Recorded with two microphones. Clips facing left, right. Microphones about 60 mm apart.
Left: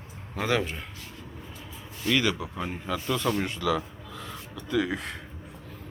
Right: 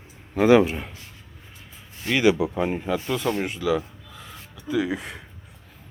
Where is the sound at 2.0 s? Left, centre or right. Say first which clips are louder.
Right 6 dB; centre.